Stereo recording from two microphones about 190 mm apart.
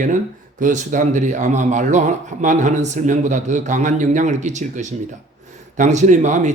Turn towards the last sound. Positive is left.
turn(degrees=-40)  # may be behind; listen again after turning